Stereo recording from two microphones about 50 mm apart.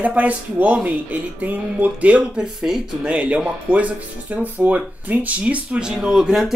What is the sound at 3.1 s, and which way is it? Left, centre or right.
Speech, right.